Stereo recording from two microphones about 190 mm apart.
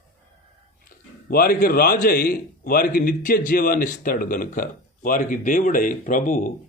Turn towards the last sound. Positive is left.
turn(degrees=45)  # may be behind; listen again after turning